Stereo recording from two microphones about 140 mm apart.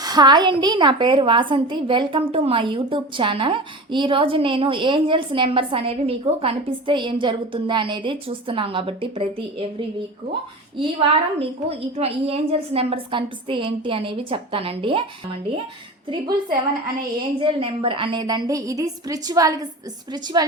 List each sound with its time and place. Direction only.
0.0 s a woman's voice: 30° right (ahead or behind)
10.8 s a woman's voice: 40° right (ahead or behind)
17.4 s a woman's voice: 40° right (ahead or behind)